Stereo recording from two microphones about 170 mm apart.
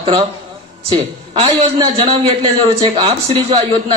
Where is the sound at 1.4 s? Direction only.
35° right (ahead or behind).